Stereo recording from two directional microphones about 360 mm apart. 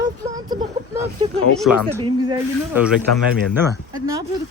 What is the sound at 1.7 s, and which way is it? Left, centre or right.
Speech, centre.